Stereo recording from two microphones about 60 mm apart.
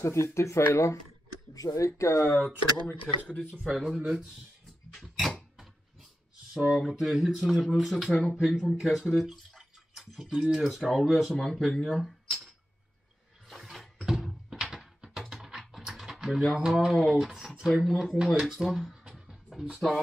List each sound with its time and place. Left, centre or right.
0.0 s speech: left
1.5 s speech: left
1.9 s speech: left
2.3 s speech: left
3.6 s speech: centre
4.9 s a sound: centre
6.5 s speech: centre
12.0 s a sound: centre
17.0 s speech: centre
18.5 s music: centre